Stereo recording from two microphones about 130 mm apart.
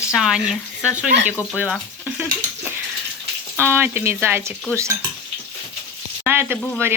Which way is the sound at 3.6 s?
15° right (ahead or behind).